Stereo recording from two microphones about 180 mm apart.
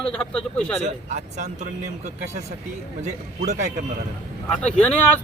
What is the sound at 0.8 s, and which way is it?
Speech, 40° right (ahead or behind).